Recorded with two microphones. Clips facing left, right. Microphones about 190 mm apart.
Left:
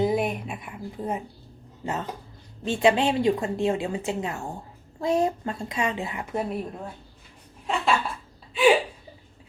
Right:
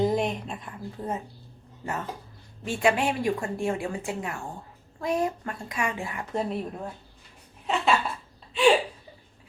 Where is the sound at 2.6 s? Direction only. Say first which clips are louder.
Left 3 dB; 20° left (ahead or behind).